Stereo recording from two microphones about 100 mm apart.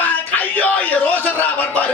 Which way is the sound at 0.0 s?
15° left (ahead or behind).